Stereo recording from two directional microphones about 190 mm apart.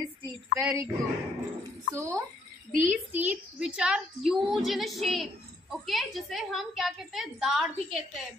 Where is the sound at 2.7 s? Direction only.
45° right (ahead or behind).